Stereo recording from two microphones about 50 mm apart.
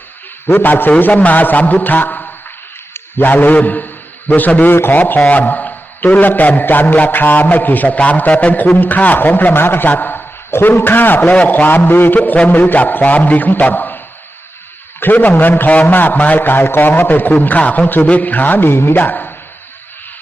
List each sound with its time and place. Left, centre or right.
0.5 s a man's voice: left
10.5 s a man's voice: left
15.0 s a man's voice: left